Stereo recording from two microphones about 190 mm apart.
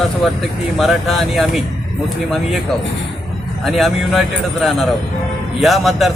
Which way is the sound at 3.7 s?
Centre (ahead or behind).